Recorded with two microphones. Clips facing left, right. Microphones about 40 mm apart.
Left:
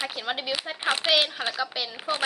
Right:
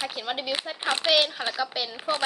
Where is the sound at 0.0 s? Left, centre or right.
Centre.